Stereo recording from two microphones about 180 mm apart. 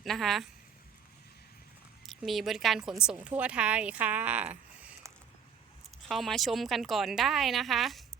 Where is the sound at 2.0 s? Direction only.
Centre (ahead or behind).